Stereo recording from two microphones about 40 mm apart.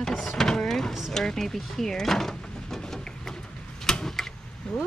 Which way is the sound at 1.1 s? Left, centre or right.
Centre.